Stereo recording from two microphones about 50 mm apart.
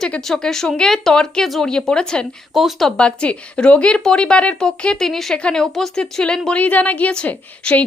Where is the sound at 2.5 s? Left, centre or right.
Centre.